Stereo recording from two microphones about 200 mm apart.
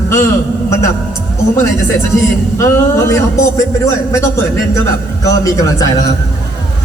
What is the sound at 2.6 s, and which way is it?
Speech, 15° left (ahead or behind).